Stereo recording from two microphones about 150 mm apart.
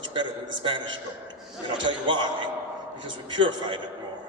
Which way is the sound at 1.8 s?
30° right (ahead or behind).